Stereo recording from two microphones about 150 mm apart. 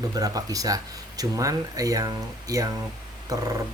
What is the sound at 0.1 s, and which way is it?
Speech, 25° right (ahead or behind).